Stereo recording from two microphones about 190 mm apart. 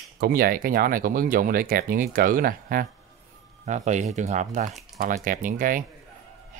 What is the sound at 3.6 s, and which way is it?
Speech, 40° right (ahead or behind).